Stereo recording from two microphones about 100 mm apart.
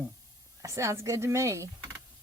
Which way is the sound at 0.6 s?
30° right (ahead or behind).